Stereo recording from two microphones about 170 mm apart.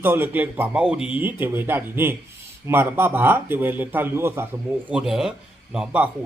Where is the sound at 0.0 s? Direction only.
10° right (ahead or behind).